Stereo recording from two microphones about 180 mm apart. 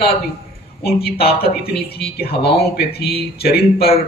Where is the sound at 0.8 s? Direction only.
60° left (ahead or behind).